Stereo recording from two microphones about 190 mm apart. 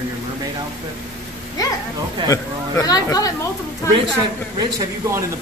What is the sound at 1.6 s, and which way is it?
Speech, 20° left (ahead or behind).